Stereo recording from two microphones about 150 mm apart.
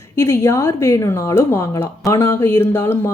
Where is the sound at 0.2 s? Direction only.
15° left (ahead or behind).